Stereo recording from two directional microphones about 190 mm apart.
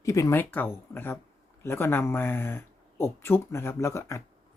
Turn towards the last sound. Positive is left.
turn(degrees=15)  # may be behind; listen again after turning